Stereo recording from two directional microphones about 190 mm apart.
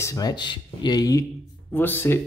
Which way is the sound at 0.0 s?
20° left (ahead or behind).